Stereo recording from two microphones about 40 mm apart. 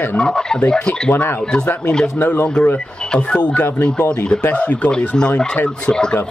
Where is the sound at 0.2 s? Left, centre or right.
Centre.